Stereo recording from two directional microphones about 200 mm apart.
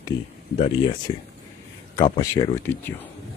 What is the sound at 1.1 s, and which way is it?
Speech, 25° left (ahead or behind).